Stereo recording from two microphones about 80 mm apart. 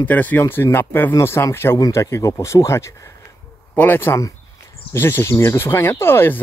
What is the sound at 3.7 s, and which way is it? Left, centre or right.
Speech, left.